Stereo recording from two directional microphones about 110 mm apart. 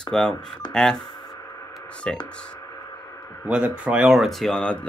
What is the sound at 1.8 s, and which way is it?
Speech, 10° left (ahead or behind).